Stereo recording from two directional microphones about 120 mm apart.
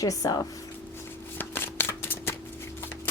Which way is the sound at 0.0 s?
30° left (ahead or behind).